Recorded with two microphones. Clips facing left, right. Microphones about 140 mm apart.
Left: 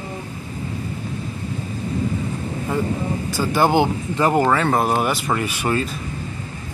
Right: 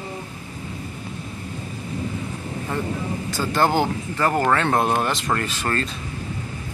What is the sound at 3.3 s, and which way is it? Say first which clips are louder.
Speech: left 2 dB; 10° left (ahead or behind).